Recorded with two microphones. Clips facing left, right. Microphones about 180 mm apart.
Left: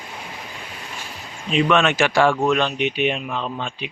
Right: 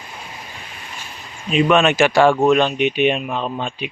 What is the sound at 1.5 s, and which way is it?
Speech, 10° right (ahead or behind).